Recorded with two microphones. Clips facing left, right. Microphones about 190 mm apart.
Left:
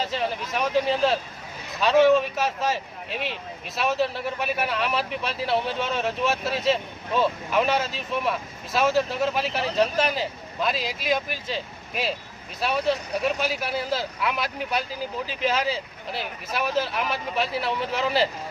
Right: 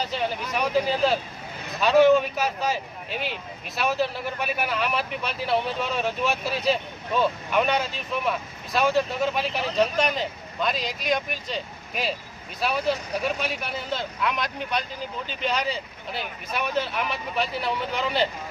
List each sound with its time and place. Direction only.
0.0 s a man's voice: centre (ahead or behind)